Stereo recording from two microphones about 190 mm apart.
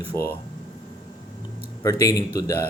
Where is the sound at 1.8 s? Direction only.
20° left (ahead or behind).